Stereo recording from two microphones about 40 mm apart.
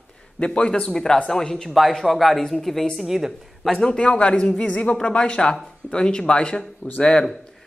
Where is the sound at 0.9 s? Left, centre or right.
Centre.